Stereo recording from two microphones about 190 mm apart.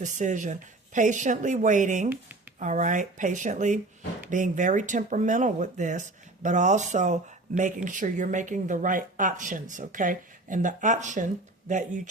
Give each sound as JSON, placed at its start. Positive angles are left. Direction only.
{"t": 0.0, "sound": "speech", "side_deg": -40}